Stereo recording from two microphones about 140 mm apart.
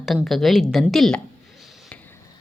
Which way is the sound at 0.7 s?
Centre (ahead or behind).